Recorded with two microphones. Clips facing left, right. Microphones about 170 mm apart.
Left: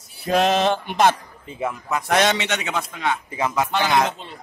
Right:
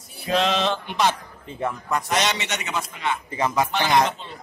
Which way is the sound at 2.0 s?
55° left (ahead or behind).